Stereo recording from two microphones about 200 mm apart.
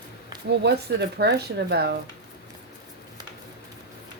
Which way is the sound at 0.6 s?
55° right (ahead or behind).